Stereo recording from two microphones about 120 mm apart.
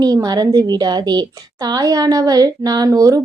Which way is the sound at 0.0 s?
35° right (ahead or behind).